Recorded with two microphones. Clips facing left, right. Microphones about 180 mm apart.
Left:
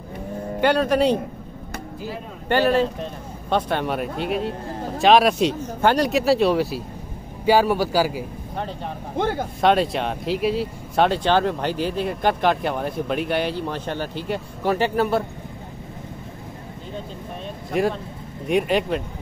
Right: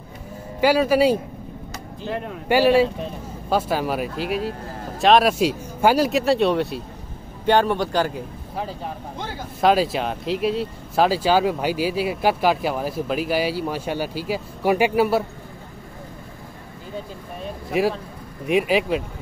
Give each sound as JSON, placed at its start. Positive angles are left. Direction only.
{"t": 0.6, "sound": "speech", "side_deg": -5}
{"t": 2.4, "sound": "a man's voice", "side_deg": -10}
{"t": 9.1, "sound": "speech", "side_deg": 55}
{"t": 9.6, "sound": "speech", "side_deg": 0}
{"t": 17.6, "sound": "speech", "side_deg": -5}